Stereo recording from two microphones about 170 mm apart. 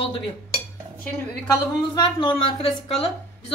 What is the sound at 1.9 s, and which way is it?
Speech, 25° left (ahead or behind).